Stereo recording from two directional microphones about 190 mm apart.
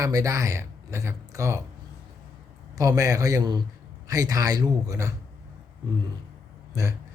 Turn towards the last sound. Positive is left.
turn(degrees=-20)  # may be behind; listen again after turning